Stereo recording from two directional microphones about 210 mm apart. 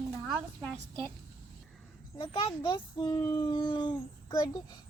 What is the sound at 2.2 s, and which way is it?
A child's voice, 25° left (ahead or behind).